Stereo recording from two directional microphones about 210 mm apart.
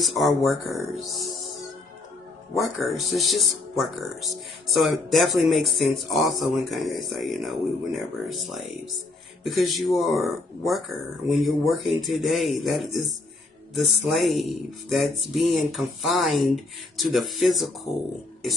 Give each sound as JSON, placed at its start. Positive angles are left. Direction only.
{"t": 0.0, "sound": "speech", "side_deg": 0}